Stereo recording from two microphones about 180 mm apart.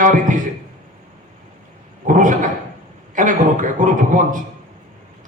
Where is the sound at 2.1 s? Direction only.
45° right (ahead or behind).